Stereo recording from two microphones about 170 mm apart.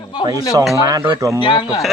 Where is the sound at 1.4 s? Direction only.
30° left (ahead or behind).